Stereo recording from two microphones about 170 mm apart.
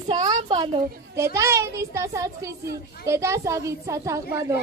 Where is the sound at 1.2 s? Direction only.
15° right (ahead or behind).